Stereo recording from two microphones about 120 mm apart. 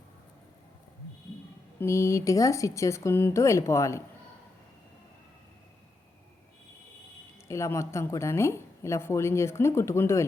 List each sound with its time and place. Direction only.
1.8 s a woman's voice: 25° left (ahead or behind)
7.4 s a woman's voice: 25° left (ahead or behind)